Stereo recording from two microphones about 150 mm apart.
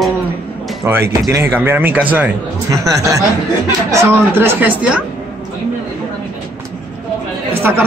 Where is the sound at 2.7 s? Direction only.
20° right (ahead or behind).